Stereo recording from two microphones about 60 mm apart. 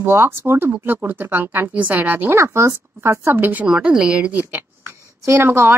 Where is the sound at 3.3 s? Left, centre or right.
Right.